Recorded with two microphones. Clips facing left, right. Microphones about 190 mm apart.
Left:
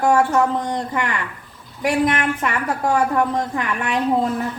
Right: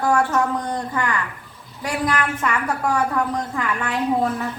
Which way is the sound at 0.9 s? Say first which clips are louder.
Even; 25° left (ahead or behind).